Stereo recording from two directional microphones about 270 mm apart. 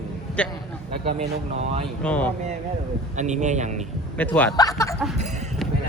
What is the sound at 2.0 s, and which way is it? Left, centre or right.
Speech, centre.